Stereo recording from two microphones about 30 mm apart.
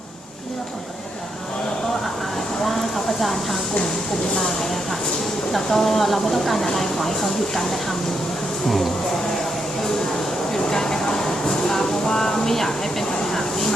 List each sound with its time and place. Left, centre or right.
3.2 s speech: centre
5.5 s speech: centre
10.5 s a sound: centre
13.1 s vehicle: centre